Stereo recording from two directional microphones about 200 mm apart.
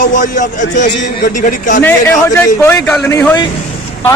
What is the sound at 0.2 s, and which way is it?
A man's voice, 40° left (ahead or behind).